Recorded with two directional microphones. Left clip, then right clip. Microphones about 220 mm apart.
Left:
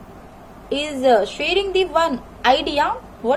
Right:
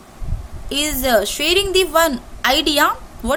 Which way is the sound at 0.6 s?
60° right (ahead or behind).